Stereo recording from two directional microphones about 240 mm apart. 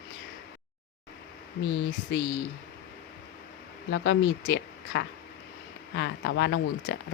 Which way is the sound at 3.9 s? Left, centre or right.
Left.